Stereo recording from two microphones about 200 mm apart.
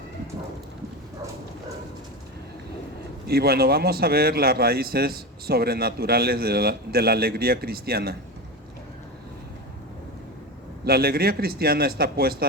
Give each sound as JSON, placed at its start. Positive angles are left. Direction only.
{"t": 3.2, "sound": "a man's voice", "side_deg": -50}
{"t": 10.8, "sound": "a man's voice", "side_deg": -50}